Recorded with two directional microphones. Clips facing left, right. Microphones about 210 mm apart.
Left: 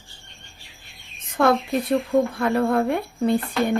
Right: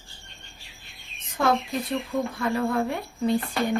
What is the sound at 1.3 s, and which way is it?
Speech, 60° left (ahead or behind).